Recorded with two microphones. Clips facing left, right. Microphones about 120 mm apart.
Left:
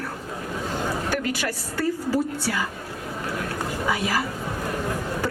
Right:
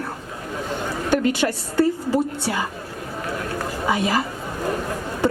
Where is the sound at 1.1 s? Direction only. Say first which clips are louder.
Right 7 dB; 25° right (ahead or behind).